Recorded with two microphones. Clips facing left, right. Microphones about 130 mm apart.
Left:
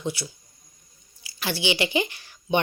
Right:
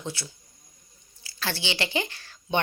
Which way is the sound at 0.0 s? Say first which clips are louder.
Left 5 dB; 15° left (ahead or behind).